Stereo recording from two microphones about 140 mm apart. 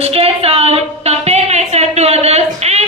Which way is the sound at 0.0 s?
45° right (ahead or behind).